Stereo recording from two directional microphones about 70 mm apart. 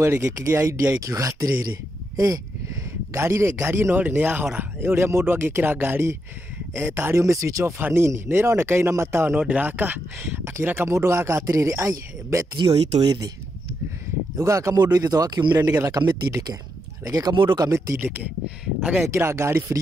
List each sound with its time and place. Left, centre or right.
0.2 s speech: right
2.1 s a sound: right
3.1 s speech: right
7.2 s speech: right
7.8 s speech: right
9.4 s speech: right
10.9 s speech: right
12.5 s speech: right
14.4 s speech: right
14.8 s speech: right
17.6 s speech: right
18.0 s speech: right
19.0 s speech: right